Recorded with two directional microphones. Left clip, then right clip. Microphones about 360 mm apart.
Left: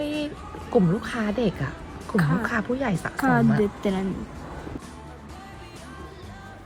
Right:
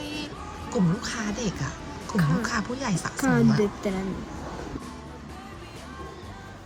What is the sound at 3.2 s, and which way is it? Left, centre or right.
Speech, centre.